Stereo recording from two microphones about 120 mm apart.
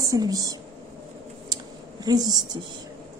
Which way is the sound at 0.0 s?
30° right (ahead or behind).